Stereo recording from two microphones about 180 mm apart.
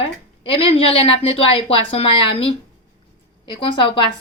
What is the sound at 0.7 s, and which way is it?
A woman's voice, 35° left (ahead or behind).